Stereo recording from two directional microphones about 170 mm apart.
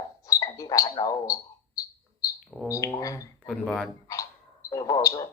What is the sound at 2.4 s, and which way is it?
Bird, centre (ahead or behind).